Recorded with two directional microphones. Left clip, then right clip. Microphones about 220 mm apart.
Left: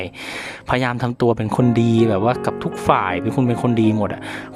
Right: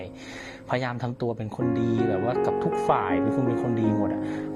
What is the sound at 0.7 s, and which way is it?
Speech, 60° left (ahead or behind).